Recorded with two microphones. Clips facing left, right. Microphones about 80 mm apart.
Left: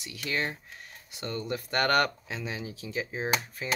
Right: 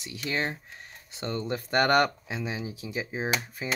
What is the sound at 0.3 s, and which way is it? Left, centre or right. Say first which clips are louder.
Speech: right 1 dB; right.